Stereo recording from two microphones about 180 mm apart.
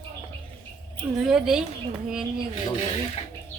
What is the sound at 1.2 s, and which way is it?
Speech, 5° right (ahead or behind).